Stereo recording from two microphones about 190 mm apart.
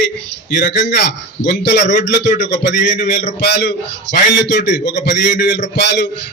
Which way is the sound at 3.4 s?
60° left (ahead or behind).